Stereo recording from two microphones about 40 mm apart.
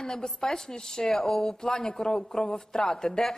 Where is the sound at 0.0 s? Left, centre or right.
Centre.